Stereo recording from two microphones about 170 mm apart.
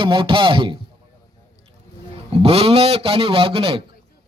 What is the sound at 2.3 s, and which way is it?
A man's voice, 35° right (ahead or behind).